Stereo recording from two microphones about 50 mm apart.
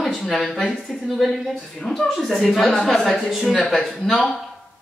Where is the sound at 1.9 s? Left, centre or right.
Centre.